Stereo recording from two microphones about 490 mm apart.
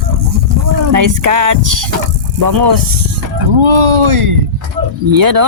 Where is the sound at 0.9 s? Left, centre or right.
Right.